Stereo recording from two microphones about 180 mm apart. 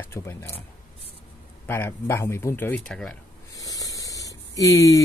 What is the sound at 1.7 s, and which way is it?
Speech, 15° left (ahead or behind).